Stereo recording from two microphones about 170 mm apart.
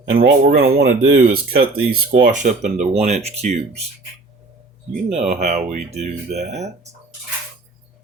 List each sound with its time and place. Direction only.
0.2 s speech: 65° right (ahead or behind); by 3.6 s 40° right (ahead or behind)
5.1 s speech: 45° right (ahead or behind)